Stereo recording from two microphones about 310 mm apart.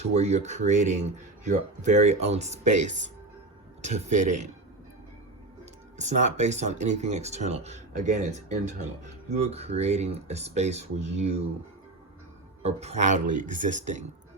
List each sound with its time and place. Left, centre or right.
0.0 s speech: right
6.0 s speech: right
12.6 s speech: right